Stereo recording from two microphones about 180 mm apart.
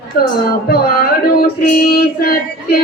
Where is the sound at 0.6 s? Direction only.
60° left (ahead or behind).